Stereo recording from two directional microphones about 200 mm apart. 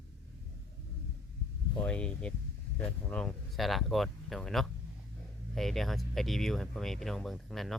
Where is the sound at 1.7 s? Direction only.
5° left (ahead or behind).